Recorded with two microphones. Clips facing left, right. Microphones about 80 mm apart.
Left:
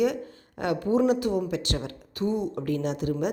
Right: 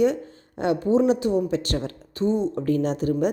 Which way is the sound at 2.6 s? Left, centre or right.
Right.